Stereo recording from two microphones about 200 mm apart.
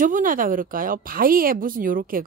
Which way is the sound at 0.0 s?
45° right (ahead or behind).